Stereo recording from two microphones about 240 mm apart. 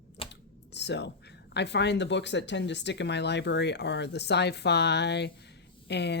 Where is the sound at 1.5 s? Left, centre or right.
Left.